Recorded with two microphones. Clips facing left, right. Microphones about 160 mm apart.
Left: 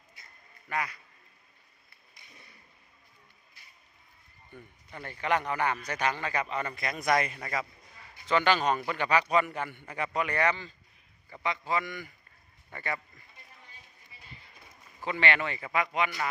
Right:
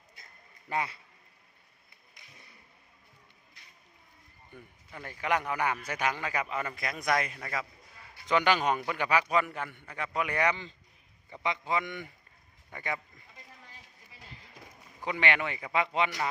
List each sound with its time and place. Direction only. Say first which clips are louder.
0.7 s a man's voice: right 1 dB; 25° right (ahead or behind)
3.6 s a sound: even; 5° left (ahead or behind)
4.5 s a man's voice: left 2 dB; 5° right (ahead or behind)
8.3 s a man's voice: left 1 dB; 15° right (ahead or behind); by 10.1 s 5° left (ahead or behind)
10.1 s a man's voice: even; 10° right (ahead or behind)
12.7 s a man's voice: even; 10° right (ahead or behind)
15.0 s a man's voice: left 1 dB; 15° right (ahead or behind)